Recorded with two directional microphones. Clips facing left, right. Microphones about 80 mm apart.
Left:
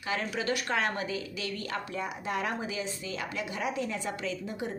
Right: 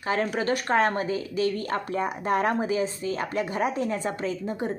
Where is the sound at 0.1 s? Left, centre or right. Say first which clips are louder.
Right 6 dB; right.